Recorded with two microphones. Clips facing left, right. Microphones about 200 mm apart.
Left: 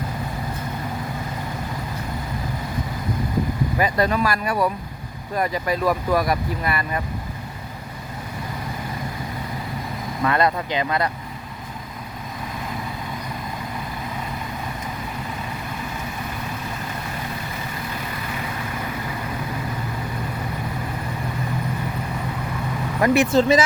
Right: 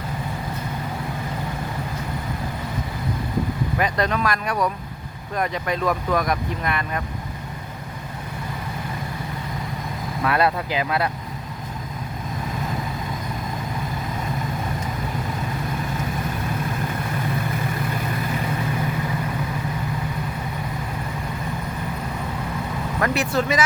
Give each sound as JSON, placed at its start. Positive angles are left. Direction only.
{"t": 3.8, "sound": "speech", "side_deg": 5}
{"t": 10.2, "sound": "speech", "side_deg": -5}
{"t": 23.0, "sound": "speech", "side_deg": 20}